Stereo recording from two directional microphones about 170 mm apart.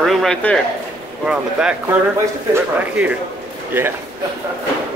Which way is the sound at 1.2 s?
5° right (ahead or behind).